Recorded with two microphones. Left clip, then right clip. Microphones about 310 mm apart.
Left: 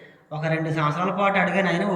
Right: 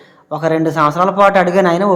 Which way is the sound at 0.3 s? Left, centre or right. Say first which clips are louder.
Right 11 dB; centre.